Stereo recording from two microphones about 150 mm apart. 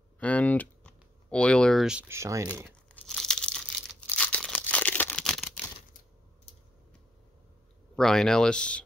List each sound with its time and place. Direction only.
0.2 s computer keyboard: 10° left (ahead or behind)
2.0 s speech: 20° right (ahead or behind)
3.1 s crumpling: centre (ahead or behind)
7.9 s speech: 5° left (ahead or behind)